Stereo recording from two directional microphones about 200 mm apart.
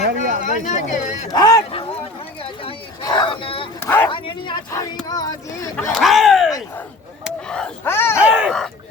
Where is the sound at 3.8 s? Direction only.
10° left (ahead or behind).